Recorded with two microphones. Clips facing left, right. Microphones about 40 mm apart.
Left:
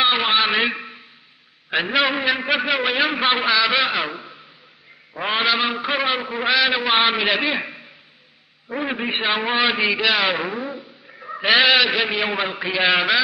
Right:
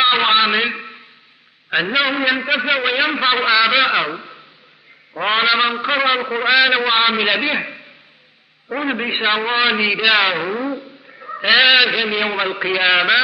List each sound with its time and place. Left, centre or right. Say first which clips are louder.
0.0 s a man's voice: right 4 dB; centre
6.5 s a man's voice: right 5 dB; right
6.8 s a man's voice: right 2 dB; centre
8.7 s a man's voice: right 3 dB; centre
9.3 s a man's voice: right 3 dB; centre
10.6 s a sound: right 6 dB; centre
11.4 s a man's voice: right 3 dB; centre